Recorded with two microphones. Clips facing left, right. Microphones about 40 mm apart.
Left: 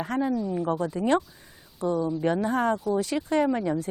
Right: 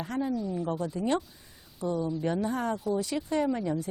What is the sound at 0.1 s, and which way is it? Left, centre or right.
Speech, left.